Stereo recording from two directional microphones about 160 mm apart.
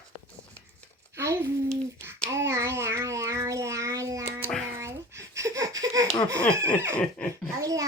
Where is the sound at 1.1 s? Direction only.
15° right (ahead or behind).